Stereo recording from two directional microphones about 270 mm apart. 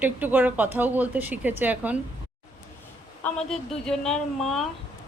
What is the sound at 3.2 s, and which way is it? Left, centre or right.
A woman's voice, centre.